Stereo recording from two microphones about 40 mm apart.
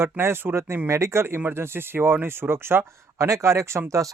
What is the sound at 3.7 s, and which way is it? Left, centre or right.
Speech, right.